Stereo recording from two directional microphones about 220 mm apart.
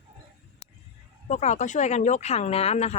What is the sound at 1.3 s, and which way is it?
Speech, 30° left (ahead or behind).